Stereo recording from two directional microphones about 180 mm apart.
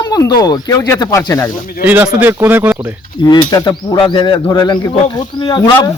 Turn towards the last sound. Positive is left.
turn(degrees=25)  # may be behind; listen again after turning